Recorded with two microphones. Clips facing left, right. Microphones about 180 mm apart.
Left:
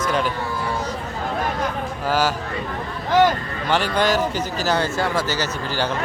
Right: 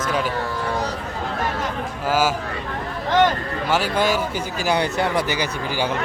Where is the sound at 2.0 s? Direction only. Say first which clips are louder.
Right 1 dB; 10° right (ahead or behind).